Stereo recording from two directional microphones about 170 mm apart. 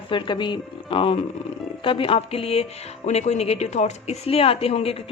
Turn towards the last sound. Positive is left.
turn(degrees=35)  # may be behind; listen again after turning